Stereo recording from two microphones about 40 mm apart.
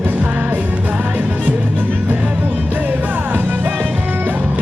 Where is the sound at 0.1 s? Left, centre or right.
Right.